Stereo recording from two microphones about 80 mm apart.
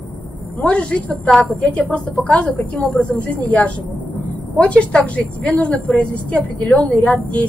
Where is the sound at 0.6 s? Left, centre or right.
Centre.